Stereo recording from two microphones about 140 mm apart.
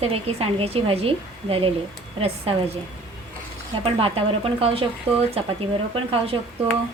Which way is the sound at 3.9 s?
40° right (ahead or behind).